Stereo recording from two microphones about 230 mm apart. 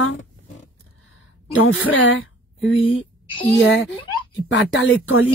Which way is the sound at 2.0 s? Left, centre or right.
Left.